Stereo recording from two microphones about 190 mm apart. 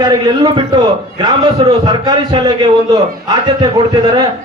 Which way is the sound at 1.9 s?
20° right (ahead or behind).